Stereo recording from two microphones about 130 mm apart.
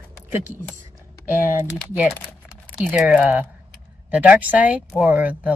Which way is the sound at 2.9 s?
15° right (ahead or behind).